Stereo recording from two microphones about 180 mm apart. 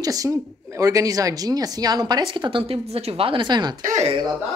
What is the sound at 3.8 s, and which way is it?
Speech, 40° right (ahead or behind).